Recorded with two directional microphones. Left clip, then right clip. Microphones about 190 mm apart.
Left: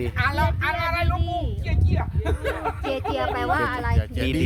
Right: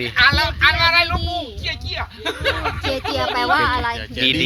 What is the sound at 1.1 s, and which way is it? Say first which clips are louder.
Speech: right 4 dB; 20° right (ahead or behind).